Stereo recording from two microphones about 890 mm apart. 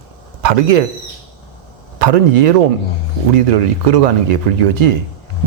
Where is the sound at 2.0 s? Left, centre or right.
Right.